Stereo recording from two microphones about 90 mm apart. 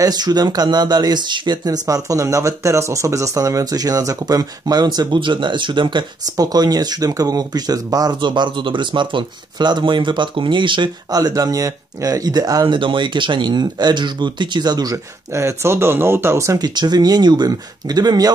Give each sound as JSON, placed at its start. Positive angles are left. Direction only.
{"t": 0.0, "sound": "speech", "side_deg": -50}
{"t": 6.3, "sound": "speech", "side_deg": -45}
{"t": 11.1, "sound": "speech", "side_deg": -45}
{"t": 12.7, "sound": "speech", "side_deg": -60}
{"t": 15.3, "sound": "speech", "side_deg": -30}
{"t": 16.5, "sound": "speech", "side_deg": -50}